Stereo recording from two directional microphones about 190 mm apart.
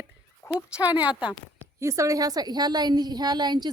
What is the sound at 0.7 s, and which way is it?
A woman's voice, 10° right (ahead or behind).